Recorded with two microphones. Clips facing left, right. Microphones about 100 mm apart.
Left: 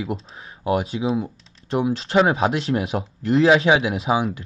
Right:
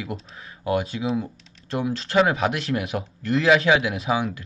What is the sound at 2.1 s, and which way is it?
Speech, 30° left (ahead or behind).